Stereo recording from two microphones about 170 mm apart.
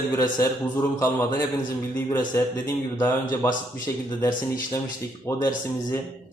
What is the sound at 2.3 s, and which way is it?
A man's voice, 15° left (ahead or behind).